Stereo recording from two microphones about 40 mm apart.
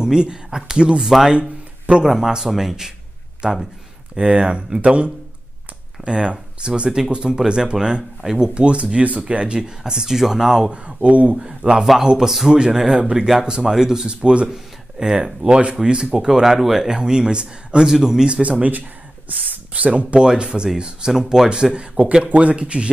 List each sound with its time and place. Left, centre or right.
0.0 s speech: centre
1.3 s a sound: right
2.0 s speech: centre; by 5.1 s right
6.0 s speech: right
8.2 s speech: centre
8.5 s speech: right; by 10.7 s centre
10.7 s speech: right
11.3 s speech: centre
14.5 s a sound: centre
15.2 s speech: right
17.8 s speech: centre
18.3 s speech: right
20.2 s speech: right
22.2 s speech: right